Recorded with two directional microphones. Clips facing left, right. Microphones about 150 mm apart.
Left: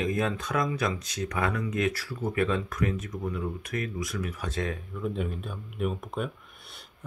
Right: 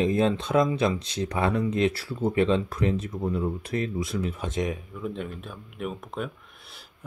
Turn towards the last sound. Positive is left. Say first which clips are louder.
# even
turn(degrees=0)  # may be behind; listen again after turning